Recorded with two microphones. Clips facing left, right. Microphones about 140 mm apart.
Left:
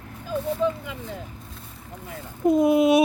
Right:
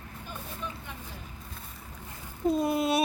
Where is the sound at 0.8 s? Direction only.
90° left.